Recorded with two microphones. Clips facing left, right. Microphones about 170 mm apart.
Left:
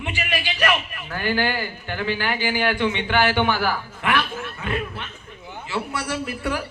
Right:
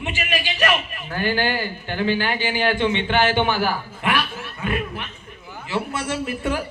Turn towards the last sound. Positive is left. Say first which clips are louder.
# right 2 dB
turn(degrees=-20)  # may be behind; listen again after turning